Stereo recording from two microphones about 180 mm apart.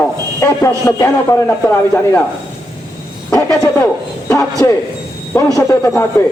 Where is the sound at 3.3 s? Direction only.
10° left (ahead or behind).